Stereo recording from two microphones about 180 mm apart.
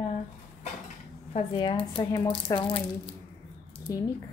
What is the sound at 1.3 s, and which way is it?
Speech, 30° left (ahead or behind).